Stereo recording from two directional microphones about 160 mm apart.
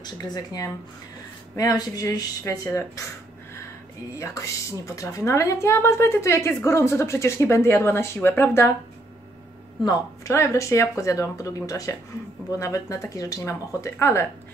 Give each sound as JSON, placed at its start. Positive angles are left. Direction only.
{"t": 0.0, "sound": "speech", "side_deg": 25}
{"t": 4.1, "sound": "a woman's voice", "side_deg": 20}
{"t": 9.8, "sound": "speech", "side_deg": 20}